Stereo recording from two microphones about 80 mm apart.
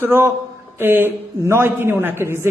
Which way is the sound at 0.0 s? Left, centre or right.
Right.